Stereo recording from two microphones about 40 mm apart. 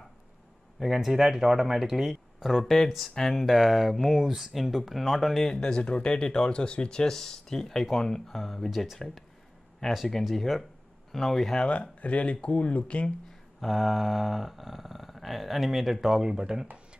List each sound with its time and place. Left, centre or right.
0.7 s speech: centre
2.5 s speech: centre
3.2 s speech: centre
3.4 s speech: centre
5.5 s speech: centre
11.7 s speech: left
13.6 s speech: centre